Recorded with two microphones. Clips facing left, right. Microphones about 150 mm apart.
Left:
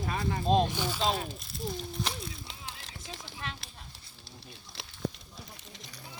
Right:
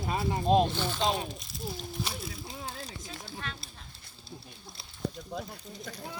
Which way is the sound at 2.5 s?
90° left.